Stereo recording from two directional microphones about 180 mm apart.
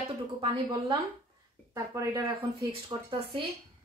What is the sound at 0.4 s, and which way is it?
A woman's voice, 30° right (ahead or behind).